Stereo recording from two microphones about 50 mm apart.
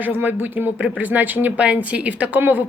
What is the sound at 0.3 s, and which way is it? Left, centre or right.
Speech, right.